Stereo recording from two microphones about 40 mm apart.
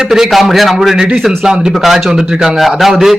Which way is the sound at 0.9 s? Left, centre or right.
Right.